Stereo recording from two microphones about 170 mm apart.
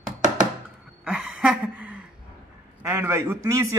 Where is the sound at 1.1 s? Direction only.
5° right (ahead or behind).